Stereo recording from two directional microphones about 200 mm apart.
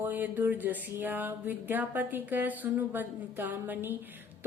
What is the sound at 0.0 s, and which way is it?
Speech, 10° right (ahead or behind).